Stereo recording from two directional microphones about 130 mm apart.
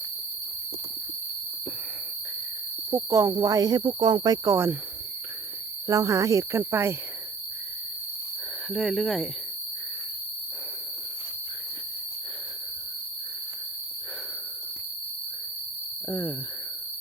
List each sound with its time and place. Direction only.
2.9 s speech: 25° right (ahead or behind)
5.9 s speech: 25° right (ahead or behind)
8.7 s speech: centre (ahead or behind)
16.0 s speech: 15° left (ahead or behind)